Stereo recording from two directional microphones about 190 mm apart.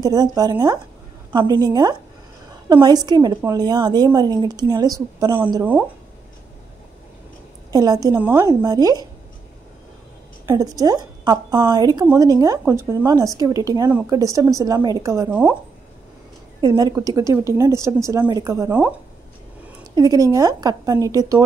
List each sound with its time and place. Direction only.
0.0 s a woman's voice: 20° right (ahead or behind)
7.7 s a woman's voice: 20° right (ahead or behind)
10.4 s a woman's voice: 20° right (ahead or behind)
16.6 s a woman's voice: 20° right (ahead or behind)
20.0 s a woman's voice: 20° right (ahead or behind)